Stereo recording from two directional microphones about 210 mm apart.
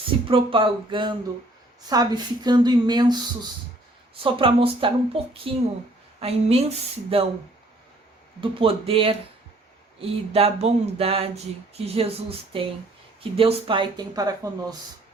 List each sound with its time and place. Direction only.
0.3 s speech: 25° right (ahead or behind)
8.4 s speech: 25° right (ahead or behind)